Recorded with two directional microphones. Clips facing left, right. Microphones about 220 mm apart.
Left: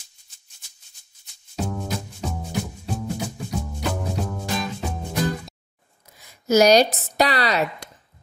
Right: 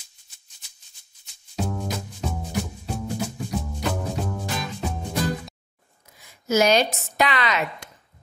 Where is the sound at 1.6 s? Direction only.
Centre (ahead or behind).